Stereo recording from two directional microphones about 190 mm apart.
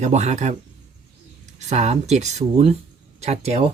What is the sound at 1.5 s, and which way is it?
Speech, 40° right (ahead or behind).